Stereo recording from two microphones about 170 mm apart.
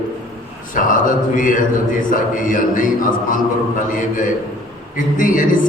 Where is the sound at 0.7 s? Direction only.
50° left (ahead or behind).